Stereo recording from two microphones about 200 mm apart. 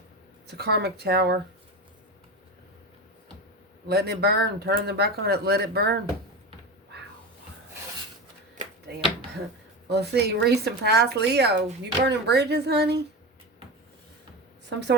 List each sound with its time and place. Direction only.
0.4 s speech: 55° right (ahead or behind)
3.8 s speech: 50° right (ahead or behind)
9.9 s speech: 55° right (ahead or behind)
14.7 s speech: 60° right (ahead or behind)